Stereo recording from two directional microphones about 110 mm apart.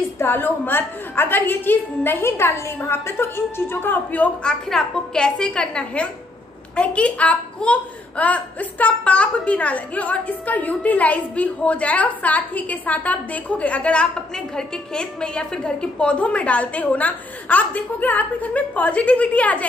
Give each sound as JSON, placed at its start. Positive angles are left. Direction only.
{"t": 0.2, "sound": "a woman's voice", "side_deg": 20}